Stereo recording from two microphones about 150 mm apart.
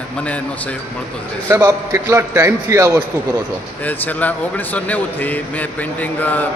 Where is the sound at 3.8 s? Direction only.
10° left (ahead or behind).